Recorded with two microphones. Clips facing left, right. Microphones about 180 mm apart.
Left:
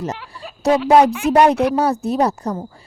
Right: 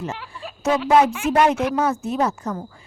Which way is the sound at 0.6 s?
35° left (ahead or behind).